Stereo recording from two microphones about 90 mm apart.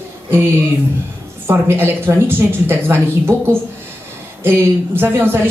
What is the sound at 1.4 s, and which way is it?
Speech, 25° right (ahead or behind).